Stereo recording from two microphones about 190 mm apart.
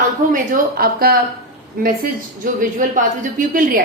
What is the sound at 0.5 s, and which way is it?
Speech, 50° right (ahead or behind).